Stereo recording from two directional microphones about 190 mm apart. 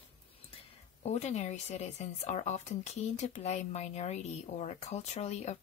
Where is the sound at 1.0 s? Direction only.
35° left (ahead or behind).